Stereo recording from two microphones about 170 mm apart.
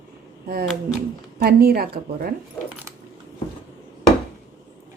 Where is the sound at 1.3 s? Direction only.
65° right (ahead or behind).